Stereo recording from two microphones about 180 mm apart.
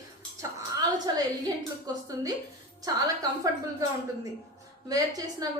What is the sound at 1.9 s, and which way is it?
Speech, 20° right (ahead or behind).